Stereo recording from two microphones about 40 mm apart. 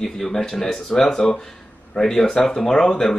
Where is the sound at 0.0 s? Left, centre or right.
Centre.